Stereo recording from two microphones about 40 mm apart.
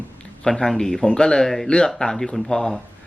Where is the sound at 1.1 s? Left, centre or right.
Left.